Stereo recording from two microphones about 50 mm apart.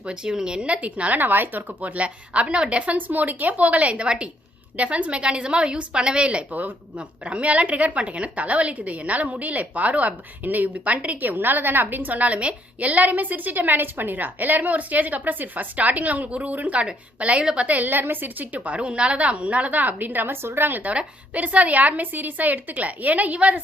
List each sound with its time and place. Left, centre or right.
0.0 s speech: centre
1.2 s a woman's voice: right
1.8 s a woman's voice: right
17.7 s a woman's voice: right
20.8 s a woman's voice: right